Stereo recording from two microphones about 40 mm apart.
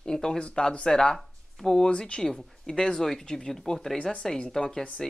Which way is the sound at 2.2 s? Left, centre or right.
Centre.